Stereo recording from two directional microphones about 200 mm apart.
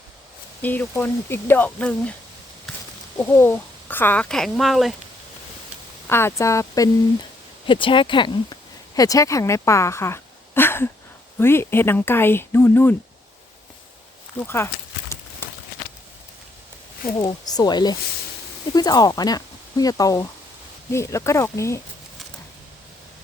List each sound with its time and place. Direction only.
0.6 s speech: 10° left (ahead or behind)
2.7 s a sound: centre (ahead or behind)
3.2 s speech: 10° left (ahead or behind)
6.1 s a woman's voice: 10° left (ahead or behind)
14.4 s speech: 10° left (ahead or behind)
15.1 s a sound: 15° left (ahead or behind)
17.2 s speech: 20° left (ahead or behind)